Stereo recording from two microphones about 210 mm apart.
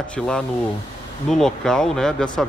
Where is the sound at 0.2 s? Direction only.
Centre (ahead or behind).